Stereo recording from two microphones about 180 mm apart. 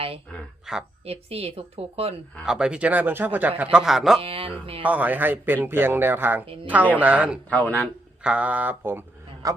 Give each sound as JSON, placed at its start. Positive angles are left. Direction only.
{"t": 0.3, "sound": "speech", "side_deg": -5}
{"t": 1.0, "sound": "speech", "side_deg": -35}
{"t": 2.4, "sound": "a man's voice", "side_deg": -5}
{"t": 4.2, "sound": "speech", "side_deg": -30}
{"t": 4.8, "sound": "speech", "side_deg": -10}
{"t": 7.5, "sound": "a man's voice", "side_deg": 10}
{"t": 8.2, "sound": "speech", "side_deg": -5}